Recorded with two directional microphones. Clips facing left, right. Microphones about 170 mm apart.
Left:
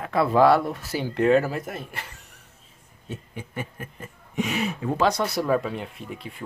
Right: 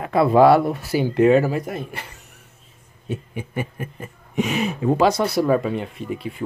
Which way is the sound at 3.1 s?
10° right (ahead or behind).